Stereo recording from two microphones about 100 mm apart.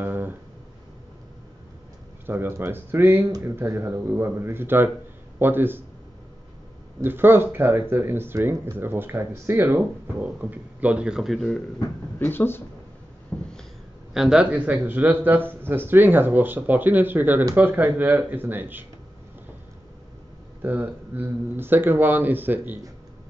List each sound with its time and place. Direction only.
0.0 s a sound: 20° right (ahead or behind)
2.2 s speech: 20° right (ahead or behind)
7.0 s speech: 20° right (ahead or behind); by 11.6 s centre (ahead or behind)
12.2 s speech: 20° left (ahead or behind)
13.3 s a sound: 20° left (ahead or behind)
14.1 s speech: 5° right (ahead or behind)
20.6 s speech: 20° right (ahead or behind)